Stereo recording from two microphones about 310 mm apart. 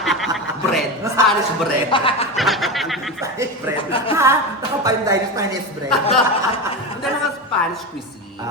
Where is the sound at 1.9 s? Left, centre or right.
Centre.